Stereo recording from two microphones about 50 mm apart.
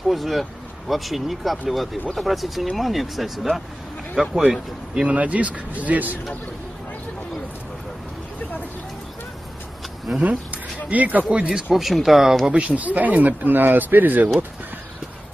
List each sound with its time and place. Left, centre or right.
0.1 s speech: centre
5.0 s speech: right
10.2 s speech: right
11.5 s speech: centre
12.4 s speech: right